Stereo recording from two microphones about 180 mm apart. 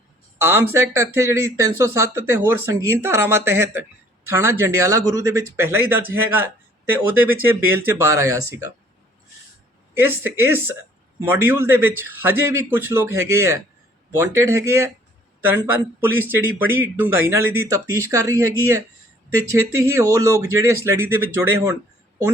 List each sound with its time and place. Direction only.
0.4 s a man's voice: 15° right (ahead or behind)
9.9 s a man's voice: 10° right (ahead or behind)